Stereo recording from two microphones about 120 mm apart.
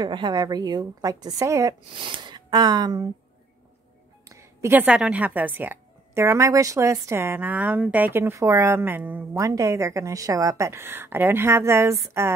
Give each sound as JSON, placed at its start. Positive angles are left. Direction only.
{"t": 0.0, "sound": "a woman's voice", "side_deg": -40}
{"t": 2.0, "sound": "speech", "side_deg": -40}
{"t": 4.3, "sound": "a sound", "side_deg": -25}
{"t": 4.8, "sound": "a woman's voice", "side_deg": -10}
{"t": 9.4, "sound": "a woman's voice", "side_deg": -25}